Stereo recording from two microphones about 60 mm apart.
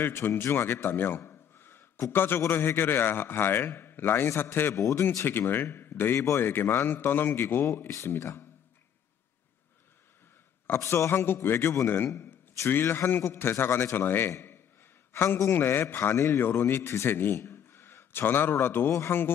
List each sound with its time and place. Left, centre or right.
0.0 s a man's voice: left
1.3 s a sound: left
2.1 s a man's voice: left
4.7 s a man's voice: left
5.2 s a man's voice: left
10.8 s a man's voice: left
11.1 s a man's voice: left
15.1 s a man's voice: left